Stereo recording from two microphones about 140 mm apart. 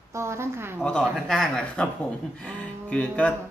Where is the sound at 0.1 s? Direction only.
20° right (ahead or behind).